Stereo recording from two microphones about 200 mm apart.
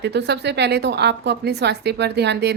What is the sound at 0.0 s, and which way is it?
Speech, 55° right (ahead or behind).